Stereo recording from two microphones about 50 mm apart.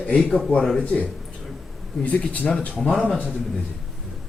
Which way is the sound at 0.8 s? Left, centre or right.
Left.